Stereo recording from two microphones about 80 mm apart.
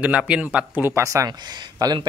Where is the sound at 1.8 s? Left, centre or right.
Right.